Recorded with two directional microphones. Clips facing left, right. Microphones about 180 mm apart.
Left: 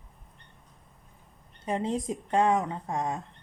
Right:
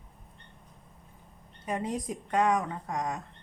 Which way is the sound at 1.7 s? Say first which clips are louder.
Left 3 dB; 25° left (ahead or behind).